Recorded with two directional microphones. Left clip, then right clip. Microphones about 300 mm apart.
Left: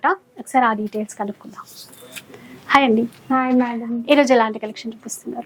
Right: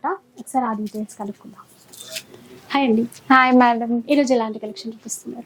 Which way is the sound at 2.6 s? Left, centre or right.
Left.